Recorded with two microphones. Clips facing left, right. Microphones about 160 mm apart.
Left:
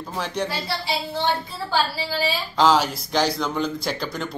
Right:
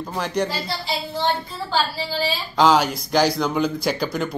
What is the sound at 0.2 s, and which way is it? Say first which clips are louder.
Speech: right 3 dB; centre (ahead or behind).